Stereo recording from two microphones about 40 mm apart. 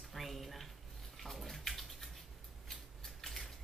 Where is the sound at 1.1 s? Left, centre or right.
Centre.